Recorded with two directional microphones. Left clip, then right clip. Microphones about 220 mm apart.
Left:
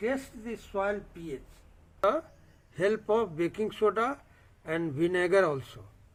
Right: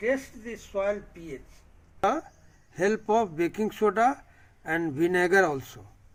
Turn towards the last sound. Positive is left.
turn(degrees=-45)  # may be behind; listen again after turning